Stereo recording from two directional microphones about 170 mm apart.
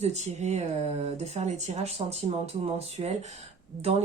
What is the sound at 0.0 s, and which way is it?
Speech, 40° right (ahead or behind).